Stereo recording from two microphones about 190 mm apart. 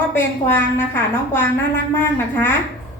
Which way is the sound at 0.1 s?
10° left (ahead or behind).